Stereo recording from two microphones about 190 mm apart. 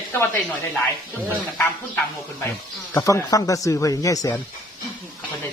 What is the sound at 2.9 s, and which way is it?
Speech, 15° left (ahead or behind).